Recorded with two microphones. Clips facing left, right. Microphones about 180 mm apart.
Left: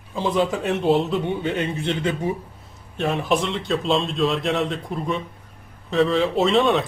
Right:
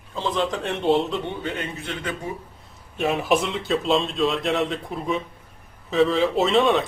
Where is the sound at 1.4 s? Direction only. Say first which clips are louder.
Left 6 dB; 25° left (ahead or behind).